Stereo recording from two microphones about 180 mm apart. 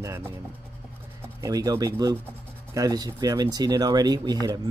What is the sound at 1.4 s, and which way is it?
Speech, 20° right (ahead or behind).